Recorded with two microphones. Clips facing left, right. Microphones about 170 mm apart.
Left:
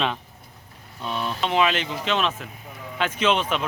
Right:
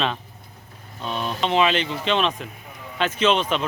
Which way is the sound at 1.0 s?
25° right (ahead or behind).